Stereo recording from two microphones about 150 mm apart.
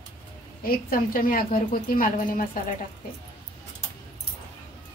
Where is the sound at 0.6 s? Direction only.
75° left (ahead or behind).